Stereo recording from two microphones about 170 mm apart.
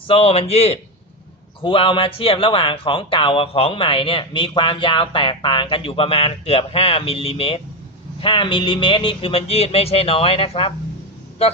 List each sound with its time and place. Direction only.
0.1 s speech: 35° left (ahead or behind)